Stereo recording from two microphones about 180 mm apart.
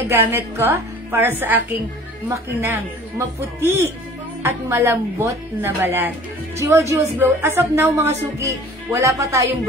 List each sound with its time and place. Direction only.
0.1 s a woman's voice: 10° right (ahead or behind)